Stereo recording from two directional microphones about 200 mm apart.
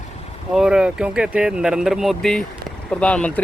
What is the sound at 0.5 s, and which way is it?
Speech, 5° right (ahead or behind).